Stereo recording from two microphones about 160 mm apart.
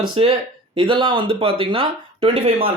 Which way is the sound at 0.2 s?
35° right (ahead or behind).